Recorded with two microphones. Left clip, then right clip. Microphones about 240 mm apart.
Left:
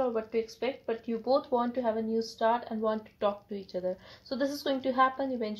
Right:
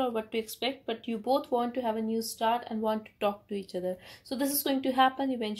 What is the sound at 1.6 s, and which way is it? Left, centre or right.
A woman's voice, right.